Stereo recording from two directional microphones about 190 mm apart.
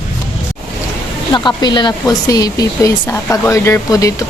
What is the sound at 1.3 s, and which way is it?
Speech, 25° left (ahead or behind).